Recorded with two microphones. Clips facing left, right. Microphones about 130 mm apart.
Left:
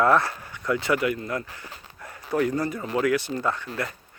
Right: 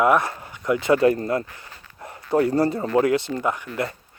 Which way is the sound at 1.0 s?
35° right (ahead or behind).